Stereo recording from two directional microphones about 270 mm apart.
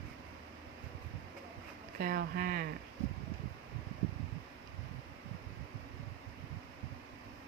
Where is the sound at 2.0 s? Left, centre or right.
Right.